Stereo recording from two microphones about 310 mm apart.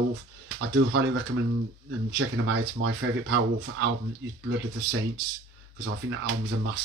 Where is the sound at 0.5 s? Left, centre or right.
Right.